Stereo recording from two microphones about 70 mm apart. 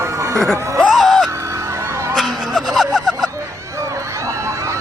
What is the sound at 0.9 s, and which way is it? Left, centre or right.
Music, centre.